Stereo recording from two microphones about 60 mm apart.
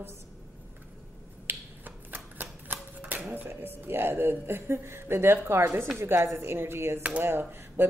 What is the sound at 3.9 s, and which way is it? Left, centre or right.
A woman's voice, right.